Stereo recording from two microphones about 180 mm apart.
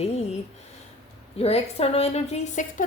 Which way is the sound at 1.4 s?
35° left (ahead or behind).